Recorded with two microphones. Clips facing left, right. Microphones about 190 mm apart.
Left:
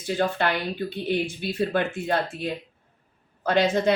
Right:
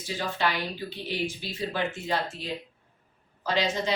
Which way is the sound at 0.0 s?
55° left (ahead or behind).